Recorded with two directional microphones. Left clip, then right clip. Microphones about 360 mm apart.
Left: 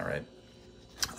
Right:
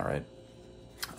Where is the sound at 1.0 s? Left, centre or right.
Centre.